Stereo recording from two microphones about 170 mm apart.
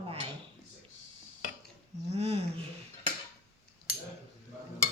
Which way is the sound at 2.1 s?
35° right (ahead or behind).